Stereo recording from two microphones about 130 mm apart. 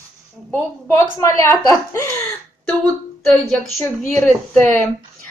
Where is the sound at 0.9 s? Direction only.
20° left (ahead or behind).